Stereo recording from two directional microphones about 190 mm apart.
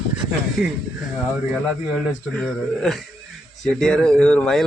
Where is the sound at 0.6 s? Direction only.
50° left (ahead or behind).